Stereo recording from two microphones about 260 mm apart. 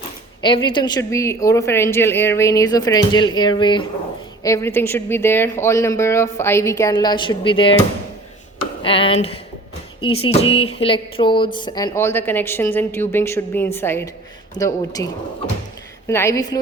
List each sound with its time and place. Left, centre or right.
0.4 s a woman's voice: centre
8.8 s a woman's voice: left